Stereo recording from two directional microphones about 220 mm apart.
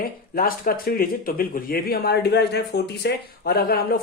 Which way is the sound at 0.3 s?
40° left (ahead or behind).